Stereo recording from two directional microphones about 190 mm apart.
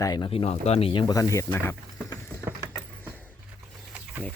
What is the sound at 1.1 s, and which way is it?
Speech, 15° left (ahead or behind).